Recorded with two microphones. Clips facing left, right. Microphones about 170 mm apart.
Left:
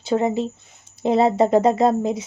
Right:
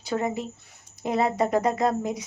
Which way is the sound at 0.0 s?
25° left (ahead or behind).